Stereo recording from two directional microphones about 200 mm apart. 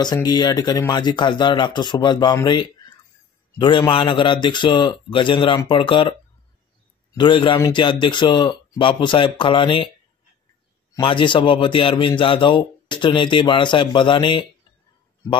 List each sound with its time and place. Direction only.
0.0 s a man's voice: 20° left (ahead or behind)
7.2 s a man's voice: 25° left (ahead or behind)
11.0 s a man's voice: 25° left (ahead or behind)